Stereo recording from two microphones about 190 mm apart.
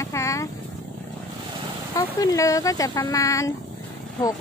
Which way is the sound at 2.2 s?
20° left (ahead or behind).